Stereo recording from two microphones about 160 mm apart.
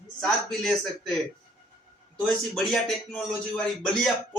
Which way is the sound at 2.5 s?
Centre (ahead or behind).